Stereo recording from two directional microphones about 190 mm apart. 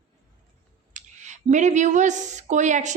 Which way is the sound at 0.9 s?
40° right (ahead or behind).